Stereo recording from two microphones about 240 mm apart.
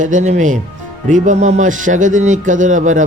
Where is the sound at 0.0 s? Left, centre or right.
Right.